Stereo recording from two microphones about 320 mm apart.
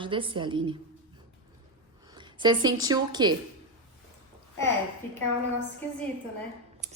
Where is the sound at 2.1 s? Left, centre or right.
Centre.